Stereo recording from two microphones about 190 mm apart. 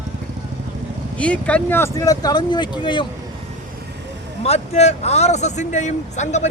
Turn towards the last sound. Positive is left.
turn(degrees=40)  # may be behind; listen again after turning